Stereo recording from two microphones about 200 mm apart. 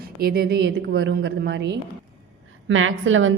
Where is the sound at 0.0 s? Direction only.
50° right (ahead or behind).